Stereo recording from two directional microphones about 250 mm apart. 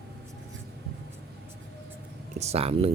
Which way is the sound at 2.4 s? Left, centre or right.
Right.